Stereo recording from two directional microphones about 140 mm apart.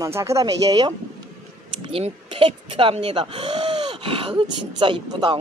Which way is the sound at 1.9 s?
40° right (ahead or behind).